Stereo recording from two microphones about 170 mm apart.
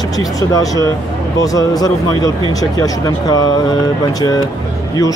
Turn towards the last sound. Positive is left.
turn(degrees=20)  # may be behind; listen again after turning